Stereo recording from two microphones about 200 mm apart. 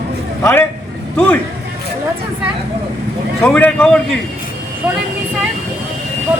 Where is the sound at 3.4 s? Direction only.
10° left (ahead or behind).